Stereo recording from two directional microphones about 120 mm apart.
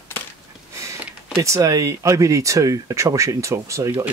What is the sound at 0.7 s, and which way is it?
Speech, 25° right (ahead or behind).